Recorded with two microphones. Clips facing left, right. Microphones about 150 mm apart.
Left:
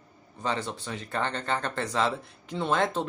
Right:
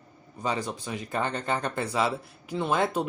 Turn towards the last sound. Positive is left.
turn(degrees=-10)  # may be behind; listen again after turning